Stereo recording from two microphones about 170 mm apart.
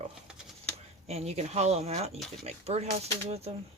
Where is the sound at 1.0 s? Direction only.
40° right (ahead or behind).